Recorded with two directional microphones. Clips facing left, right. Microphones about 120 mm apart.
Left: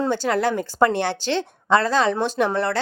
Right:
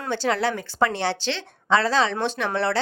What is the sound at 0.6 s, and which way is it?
A woman's voice, 50° left (ahead or behind).